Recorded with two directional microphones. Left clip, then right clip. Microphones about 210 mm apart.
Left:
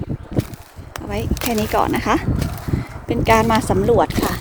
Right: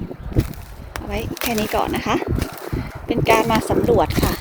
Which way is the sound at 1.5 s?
25° left (ahead or behind).